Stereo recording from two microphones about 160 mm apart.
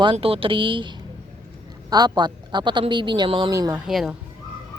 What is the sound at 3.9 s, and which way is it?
Speech, centre (ahead or behind).